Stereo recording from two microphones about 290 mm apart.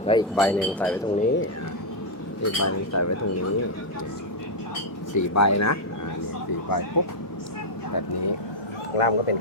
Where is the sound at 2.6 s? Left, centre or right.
Left.